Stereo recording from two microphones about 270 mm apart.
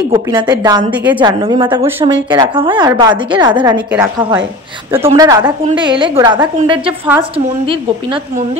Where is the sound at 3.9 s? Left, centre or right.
Centre.